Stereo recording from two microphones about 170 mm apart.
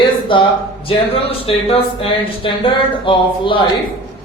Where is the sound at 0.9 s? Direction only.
35° left (ahead or behind).